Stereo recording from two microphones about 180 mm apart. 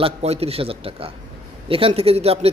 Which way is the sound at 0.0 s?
35° right (ahead or behind).